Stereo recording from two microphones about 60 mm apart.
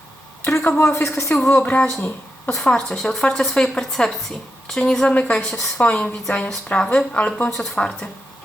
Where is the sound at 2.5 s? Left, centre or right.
Centre.